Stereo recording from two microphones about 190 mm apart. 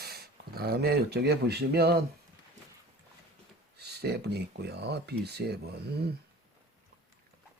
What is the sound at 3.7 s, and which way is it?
Speech, 60° right (ahead or behind).